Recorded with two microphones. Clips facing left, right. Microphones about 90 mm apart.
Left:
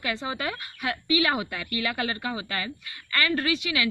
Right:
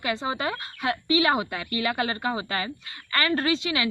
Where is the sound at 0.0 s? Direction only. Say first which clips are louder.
Right 3 dB; 25° right (ahead or behind).